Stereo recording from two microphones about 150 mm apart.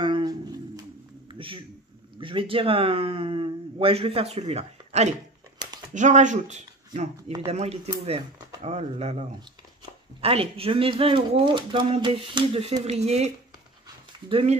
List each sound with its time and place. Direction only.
0.0 s a sound: 30° right (ahead or behind)
2.1 s speech: 35° right (ahead or behind)
10.2 s speech: 40° right (ahead or behind)
14.3 s speech: 45° right (ahead or behind)